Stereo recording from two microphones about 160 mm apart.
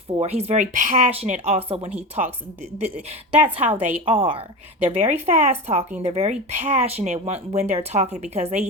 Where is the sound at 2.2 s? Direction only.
50° right (ahead or behind).